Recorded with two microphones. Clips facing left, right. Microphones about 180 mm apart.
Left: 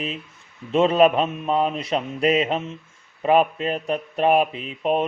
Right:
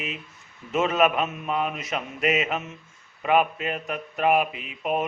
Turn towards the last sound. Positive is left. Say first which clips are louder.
# left 5 dB
turn(degrees=30)  # may be behind; listen again after turning